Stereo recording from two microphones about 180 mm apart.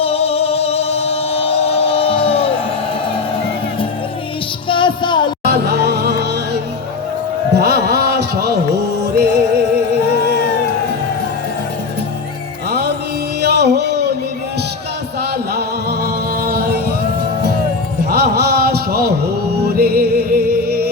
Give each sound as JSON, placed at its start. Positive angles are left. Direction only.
{"t": 0.0, "sound": "music", "side_deg": 35}
{"t": 4.7, "sound": "child singing", "side_deg": 25}
{"t": 5.5, "sound": "music", "side_deg": -65}
{"t": 7.5, "sound": "a sound", "side_deg": -65}
{"t": 9.1, "sound": "music", "side_deg": -65}
{"t": 13.4, "sound": "music", "side_deg": -65}
{"t": 16.4, "sound": "music", "side_deg": -60}
{"t": 18.1, "sound": "a sound", "side_deg": -65}
{"t": 19.7, "sound": "music", "side_deg": -60}